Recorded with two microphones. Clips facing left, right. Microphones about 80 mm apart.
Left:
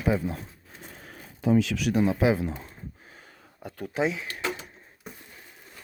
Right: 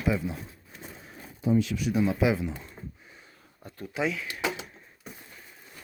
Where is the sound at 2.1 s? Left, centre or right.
Left.